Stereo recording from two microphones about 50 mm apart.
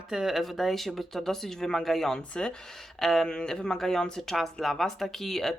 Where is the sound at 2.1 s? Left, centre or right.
Centre.